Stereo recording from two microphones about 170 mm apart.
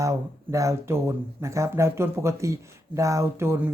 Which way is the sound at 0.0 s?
20° right (ahead or behind).